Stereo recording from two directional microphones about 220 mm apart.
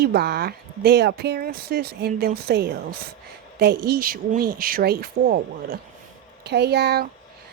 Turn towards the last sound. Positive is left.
turn(degrees=-50)  # may be behind; listen again after turning